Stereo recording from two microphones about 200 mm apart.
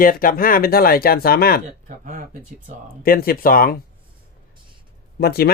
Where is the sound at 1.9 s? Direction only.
40° right (ahead or behind).